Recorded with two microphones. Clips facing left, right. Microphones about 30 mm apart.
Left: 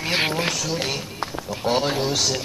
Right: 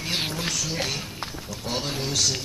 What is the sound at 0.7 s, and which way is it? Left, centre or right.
Speech, centre.